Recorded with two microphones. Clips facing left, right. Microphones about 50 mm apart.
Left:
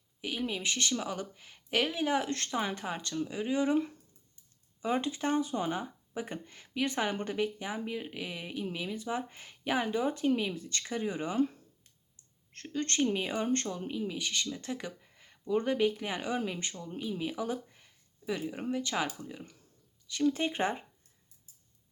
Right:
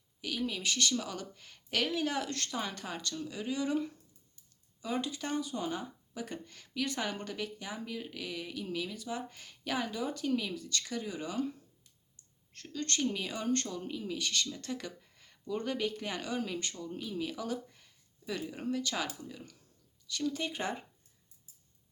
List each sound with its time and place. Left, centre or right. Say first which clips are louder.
0.2 s speech: left 1 dB; left